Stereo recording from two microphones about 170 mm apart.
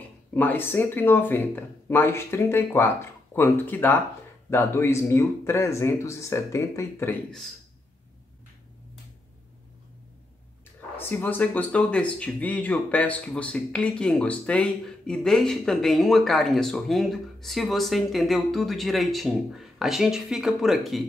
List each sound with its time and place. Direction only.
0.3 s speech: 10° left (ahead or behind)
11.0 s speech: 10° left (ahead or behind)